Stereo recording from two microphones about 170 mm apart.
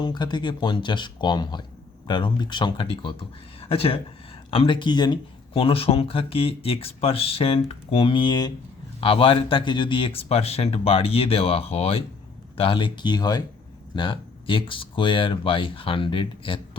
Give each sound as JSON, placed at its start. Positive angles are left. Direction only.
{"t": 0.0, "sound": "speech", "side_deg": 25}